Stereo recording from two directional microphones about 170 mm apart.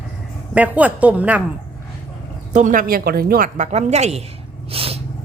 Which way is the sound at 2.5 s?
50° right (ahead or behind).